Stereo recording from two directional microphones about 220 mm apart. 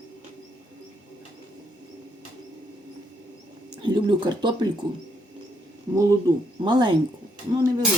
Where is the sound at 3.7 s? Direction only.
20° right (ahead or behind).